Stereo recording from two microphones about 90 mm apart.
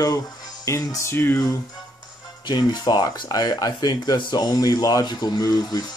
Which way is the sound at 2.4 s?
55° left (ahead or behind).